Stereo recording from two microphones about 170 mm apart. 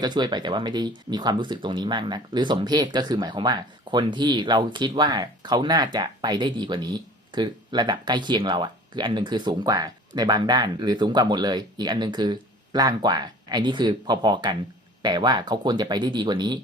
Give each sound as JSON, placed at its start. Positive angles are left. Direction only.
{"t": 0.0, "sound": "speech", "side_deg": -25}